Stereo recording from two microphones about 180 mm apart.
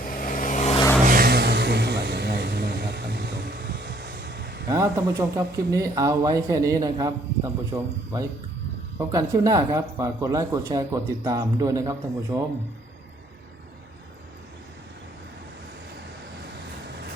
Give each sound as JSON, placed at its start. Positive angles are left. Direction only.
{"t": 0.0, "sound": "vehicle", "side_deg": 50}
{"t": 1.0, "sound": "vehicle", "side_deg": -55}
{"t": 5.4, "sound": "speech", "side_deg": -15}